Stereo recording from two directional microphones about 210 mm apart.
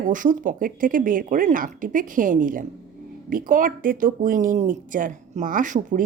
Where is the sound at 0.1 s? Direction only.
40° right (ahead or behind).